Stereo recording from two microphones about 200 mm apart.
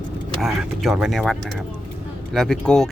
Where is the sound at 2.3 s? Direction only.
5° left (ahead or behind).